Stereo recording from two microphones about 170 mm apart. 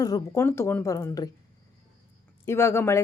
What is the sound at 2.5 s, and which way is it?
Speech, 15° left (ahead or behind).